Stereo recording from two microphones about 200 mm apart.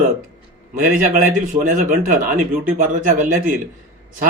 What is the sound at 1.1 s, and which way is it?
A man's voice, 40° right (ahead or behind).